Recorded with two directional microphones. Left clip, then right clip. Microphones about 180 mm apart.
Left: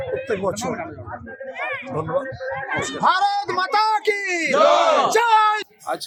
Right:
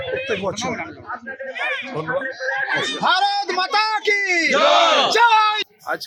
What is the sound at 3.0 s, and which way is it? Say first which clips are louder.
Speech: left 1 dB; 10° right (ahead or behind).